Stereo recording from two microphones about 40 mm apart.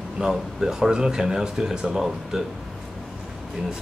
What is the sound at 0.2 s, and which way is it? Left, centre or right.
Speech, centre.